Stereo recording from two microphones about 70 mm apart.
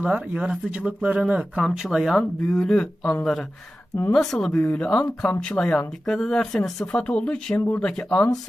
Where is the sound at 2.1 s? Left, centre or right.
Centre.